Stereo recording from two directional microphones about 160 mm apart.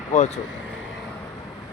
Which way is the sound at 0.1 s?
50° left (ahead or behind).